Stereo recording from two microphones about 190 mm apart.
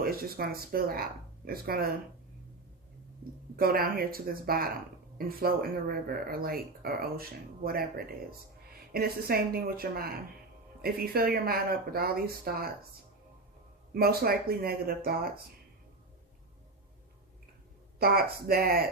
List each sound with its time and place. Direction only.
0.0 s speech: 50° right (ahead or behind)
3.5 s speech: 50° right (ahead or behind)
13.9 s speech: 55° right (ahead or behind)
18.0 s speech: 55° right (ahead or behind)